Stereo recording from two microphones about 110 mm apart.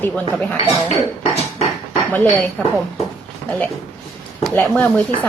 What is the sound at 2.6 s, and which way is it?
Speech, 15° left (ahead or behind).